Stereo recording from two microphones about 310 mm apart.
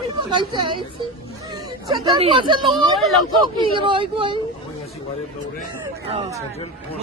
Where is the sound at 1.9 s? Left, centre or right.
Centre.